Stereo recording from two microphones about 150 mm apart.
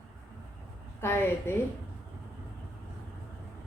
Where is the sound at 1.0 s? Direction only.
15° left (ahead or behind).